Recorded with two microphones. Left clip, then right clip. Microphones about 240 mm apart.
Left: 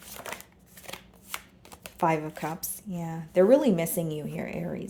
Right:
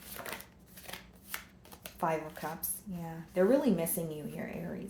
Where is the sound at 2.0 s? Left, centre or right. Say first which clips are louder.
Left 7 dB; left.